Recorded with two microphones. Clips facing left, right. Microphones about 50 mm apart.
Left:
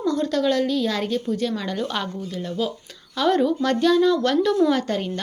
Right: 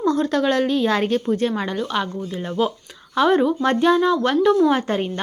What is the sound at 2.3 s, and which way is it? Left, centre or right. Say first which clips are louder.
A woman's voice: right 5 dB; right.